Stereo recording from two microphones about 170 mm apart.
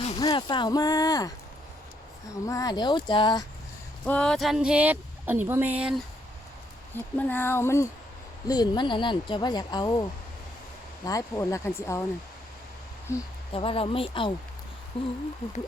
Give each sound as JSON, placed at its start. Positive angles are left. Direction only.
{"t": 0.2, "sound": "speech", "side_deg": 20}
{"t": 2.5, "sound": "speech", "side_deg": 20}
{"t": 4.0, "sound": "speech", "side_deg": 5}
{"t": 6.9, "sound": "speech", "side_deg": 10}
{"t": 13.1, "sound": "speech", "side_deg": 15}
{"t": 13.5, "sound": "speech", "side_deg": 30}